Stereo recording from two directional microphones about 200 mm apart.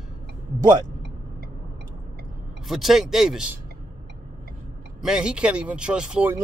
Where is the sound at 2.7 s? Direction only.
Centre (ahead or behind).